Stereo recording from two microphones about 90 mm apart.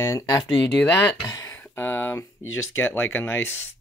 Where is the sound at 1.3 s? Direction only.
35° left (ahead or behind).